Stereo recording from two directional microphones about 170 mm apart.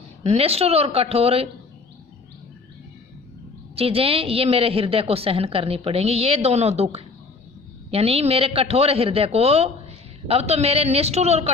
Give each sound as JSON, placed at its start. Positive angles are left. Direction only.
{"t": 0.2, "sound": "a man's voice", "side_deg": -35}
{"t": 3.8, "sound": "a man's voice", "side_deg": -35}